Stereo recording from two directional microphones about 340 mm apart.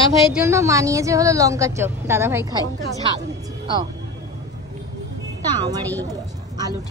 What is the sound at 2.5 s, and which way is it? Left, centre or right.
Speech, centre.